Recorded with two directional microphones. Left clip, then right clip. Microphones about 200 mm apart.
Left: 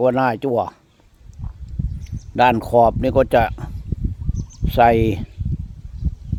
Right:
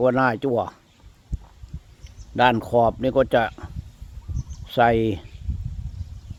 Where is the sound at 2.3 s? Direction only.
20° left (ahead or behind).